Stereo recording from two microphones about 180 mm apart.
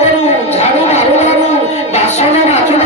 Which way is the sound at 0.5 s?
40° left (ahead or behind).